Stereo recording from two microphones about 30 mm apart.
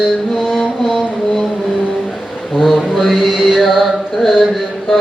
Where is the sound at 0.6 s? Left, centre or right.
Centre.